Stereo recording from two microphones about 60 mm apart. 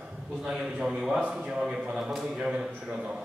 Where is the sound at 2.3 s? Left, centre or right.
Centre.